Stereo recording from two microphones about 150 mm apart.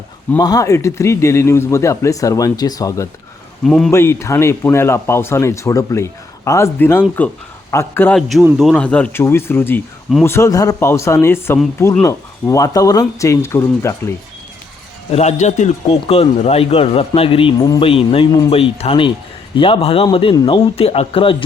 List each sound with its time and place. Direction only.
0.3 s a man's voice: 25° left (ahead or behind)
3.6 s a man's voice: centre (ahead or behind)
3.9 s speech: 15° left (ahead or behind)
8.1 s a man's voice: centre (ahead or behind); by 14.1 s 20° left (ahead or behind)
15.1 s a man's voice: 45° left (ahead or behind)
17.6 s a man's voice: 25° left (ahead or behind)
17.8 s speech: 40° left (ahead or behind)